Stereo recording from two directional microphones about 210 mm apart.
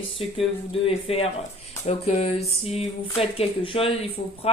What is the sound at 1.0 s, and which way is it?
Speech, 30° left (ahead or behind).